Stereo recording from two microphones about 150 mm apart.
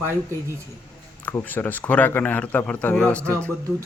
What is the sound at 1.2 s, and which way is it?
A man's voice, 10° left (ahead or behind).